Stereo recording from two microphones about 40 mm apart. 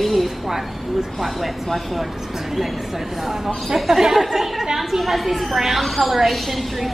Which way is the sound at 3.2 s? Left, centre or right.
Centre.